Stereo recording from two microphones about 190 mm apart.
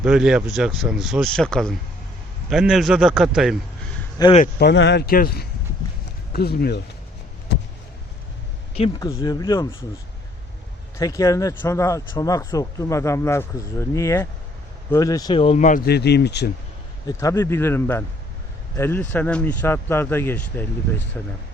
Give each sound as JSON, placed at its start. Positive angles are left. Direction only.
{"t": 0.0, "sound": "speech", "side_deg": -5}
{"t": 4.2, "sound": "speech", "side_deg": 20}
{"t": 4.6, "sound": "speech", "side_deg": 70}
{"t": 9.0, "sound": "speech", "side_deg": 20}
{"t": 10.9, "sound": "speech", "side_deg": 15}
{"t": 17.1, "sound": "speech", "side_deg": 15}